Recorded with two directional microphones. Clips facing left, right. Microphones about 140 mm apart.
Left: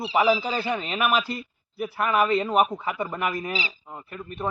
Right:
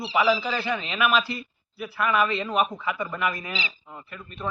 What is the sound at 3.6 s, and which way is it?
Speech, 30° left (ahead or behind).